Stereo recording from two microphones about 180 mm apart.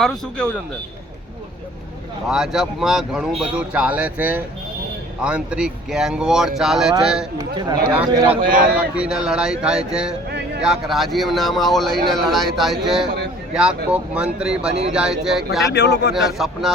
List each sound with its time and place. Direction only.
0.0 s speech: 5° left (ahead or behind)
2.2 s speech: 5° right (ahead or behind)
7.3 s speech: 20° right (ahead or behind)
8.4 s speech: 50° right (ahead or behind)
8.7 s speech: 5° right (ahead or behind)
14.7 s speech: 35° right (ahead or behind)
14.9 s speech: 5° right (ahead or behind)
15.7 s speech: 65° left (ahead or behind)
16.1 s speech: centre (ahead or behind)